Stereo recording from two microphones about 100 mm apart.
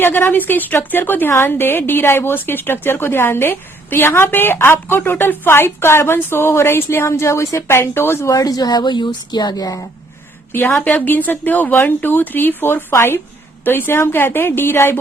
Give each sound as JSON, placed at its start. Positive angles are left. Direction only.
{"t": 0.0, "sound": "a woman's voice", "side_deg": 20}
{"t": 10.5, "sound": "a woman's voice", "side_deg": 20}